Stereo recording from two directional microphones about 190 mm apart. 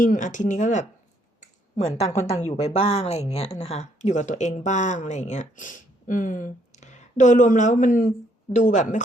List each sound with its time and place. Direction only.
0.0 s speech: 40° left (ahead or behind)
1.4 s a sound: 35° left (ahead or behind)
2.5 s speech: 35° left (ahead or behind)